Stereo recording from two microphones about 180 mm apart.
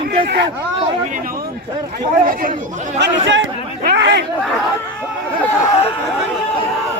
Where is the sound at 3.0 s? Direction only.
90° right.